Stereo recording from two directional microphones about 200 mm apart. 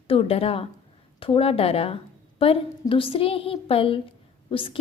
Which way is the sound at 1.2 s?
25° left (ahead or behind).